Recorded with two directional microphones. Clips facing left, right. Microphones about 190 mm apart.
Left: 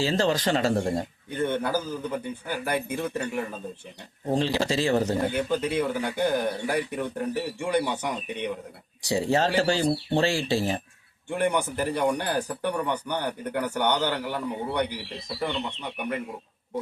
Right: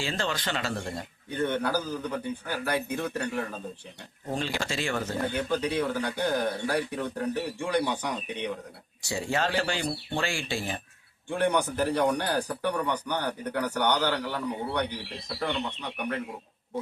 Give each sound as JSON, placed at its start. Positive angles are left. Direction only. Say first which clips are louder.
{"t": 0.0, "sound": "speech", "louder": "left 7 dB", "side_deg": 35}
{"t": 1.4, "sound": "speech", "louder": "left 1 dB", "side_deg": 15}
{"t": 4.3, "sound": "speech", "louder": "left 7 dB", "side_deg": 30}
{"t": 5.3, "sound": "speech", "louder": "left 2 dB", "side_deg": 20}
{"t": 9.1, "sound": "speech", "louder": "left 5 dB", "side_deg": 35}
{"t": 11.3, "sound": "speech", "louder": "even", "side_deg": 15}